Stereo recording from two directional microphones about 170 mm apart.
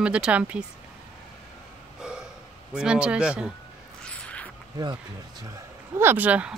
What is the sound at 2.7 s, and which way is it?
Speech, 5° right (ahead or behind).